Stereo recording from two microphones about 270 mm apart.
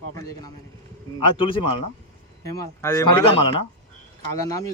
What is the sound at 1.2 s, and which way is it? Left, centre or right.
A man's voice, centre.